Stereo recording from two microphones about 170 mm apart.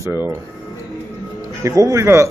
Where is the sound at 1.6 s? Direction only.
20° right (ahead or behind).